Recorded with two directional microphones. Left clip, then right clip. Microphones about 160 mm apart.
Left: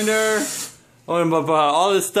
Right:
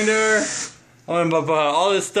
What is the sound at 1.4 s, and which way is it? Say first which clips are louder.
Speech: left 1 dB; 35° left (ahead or behind).